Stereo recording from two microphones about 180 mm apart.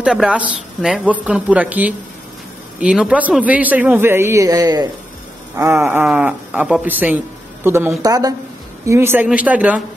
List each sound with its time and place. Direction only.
0.0 s a man's voice: 5° right (ahead or behind)